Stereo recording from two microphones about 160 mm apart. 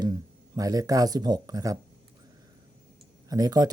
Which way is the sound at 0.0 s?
25° right (ahead or behind).